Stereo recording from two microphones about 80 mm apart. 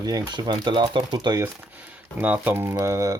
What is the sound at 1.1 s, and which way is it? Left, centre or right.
Speech, right.